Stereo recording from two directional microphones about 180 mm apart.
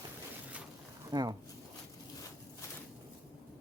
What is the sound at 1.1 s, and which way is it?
Speech, 25° right (ahead or behind).